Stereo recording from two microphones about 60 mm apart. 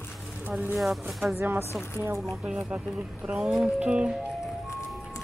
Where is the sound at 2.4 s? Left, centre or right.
Centre.